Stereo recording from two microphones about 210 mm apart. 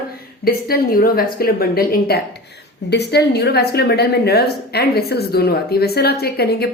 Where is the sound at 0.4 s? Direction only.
45° left (ahead or behind).